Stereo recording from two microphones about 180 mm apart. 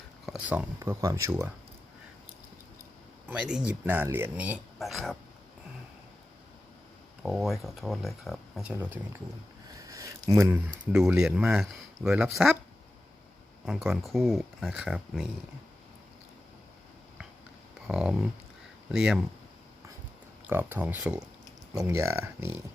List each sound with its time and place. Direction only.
0.3 s speech: 5° right (ahead or behind)
3.2 s speech: 5° right (ahead or behind)
7.2 s speech: centre (ahead or behind)
9.7 s a sound: 20° right (ahead or behind)
10.9 s speech: 5° right (ahead or behind)
13.7 s speech: centre (ahead or behind)
17.8 s a sound: 5° right (ahead or behind)
18.9 s speech: 5° right (ahead or behind)
20.5 s speech: 10° right (ahead or behind)